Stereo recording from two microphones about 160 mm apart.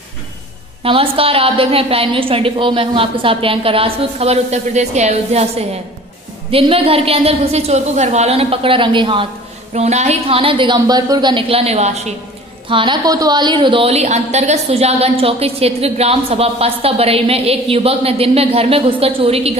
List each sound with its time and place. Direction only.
0.8 s a woman's voice: 35° right (ahead or behind)
9.8 s a woman's voice: 45° right (ahead or behind)